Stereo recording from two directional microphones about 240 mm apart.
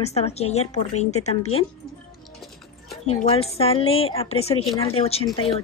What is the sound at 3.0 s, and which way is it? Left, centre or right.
A woman's voice, left.